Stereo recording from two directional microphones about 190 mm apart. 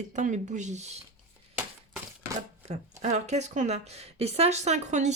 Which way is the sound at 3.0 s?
35° right (ahead or behind).